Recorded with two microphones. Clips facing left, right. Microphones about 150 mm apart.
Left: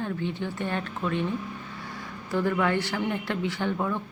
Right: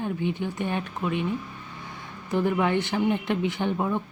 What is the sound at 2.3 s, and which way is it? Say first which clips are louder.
Speech: right 2 dB; 20° right (ahead or behind).